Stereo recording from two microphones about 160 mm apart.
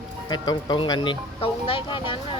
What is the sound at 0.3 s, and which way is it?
Speech, 25° left (ahead or behind).